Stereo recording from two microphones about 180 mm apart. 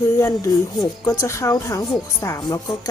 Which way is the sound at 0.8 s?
20° left (ahead or behind).